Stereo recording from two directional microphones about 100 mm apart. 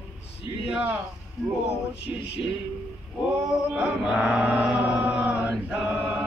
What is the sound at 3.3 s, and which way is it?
Chant, 10° right (ahead or behind).